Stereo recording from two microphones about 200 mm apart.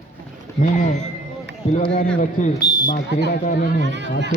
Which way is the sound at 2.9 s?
55° left (ahead or behind).